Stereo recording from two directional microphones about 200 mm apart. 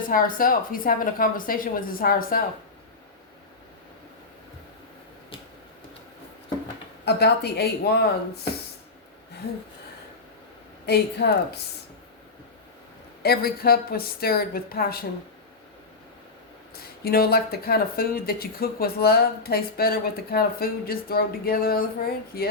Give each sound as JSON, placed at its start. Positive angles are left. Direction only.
{"t": 0.0, "sound": "speech", "side_deg": 45}
{"t": 7.0, "sound": "speech", "side_deg": 55}
{"t": 10.8, "sound": "speech", "side_deg": 55}
{"t": 13.2, "sound": "speech", "side_deg": 50}
{"t": 16.7, "sound": "speech", "side_deg": 50}